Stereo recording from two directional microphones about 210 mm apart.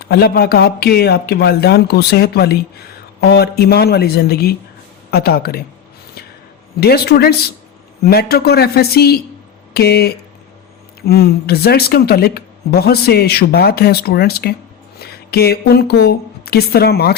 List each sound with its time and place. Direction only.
0.0 s speech: 50° left (ahead or behind)
6.7 s a woman's voice: 50° left (ahead or behind)